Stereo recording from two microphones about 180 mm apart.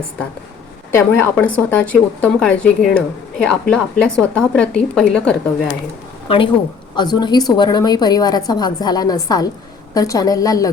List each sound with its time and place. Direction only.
0.9 s a woman's voice: 10° left (ahead or behind)
6.2 s a woman's voice: 30° left (ahead or behind)